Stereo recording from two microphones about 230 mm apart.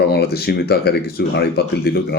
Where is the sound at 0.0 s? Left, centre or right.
Left.